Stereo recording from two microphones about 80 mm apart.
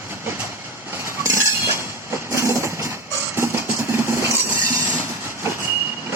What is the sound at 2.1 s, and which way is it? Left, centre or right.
Vehicle, right.